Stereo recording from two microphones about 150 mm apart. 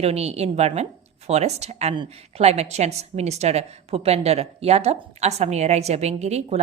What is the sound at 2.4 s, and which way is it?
A woman's voice, 45° right (ahead or behind).